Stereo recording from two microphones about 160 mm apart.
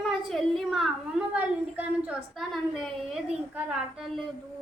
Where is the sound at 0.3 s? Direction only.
Centre (ahead or behind).